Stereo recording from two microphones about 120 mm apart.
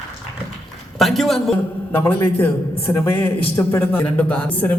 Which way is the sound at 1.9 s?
20° left (ahead or behind).